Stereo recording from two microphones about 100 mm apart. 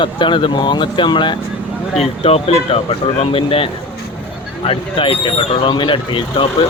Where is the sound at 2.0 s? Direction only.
85° left.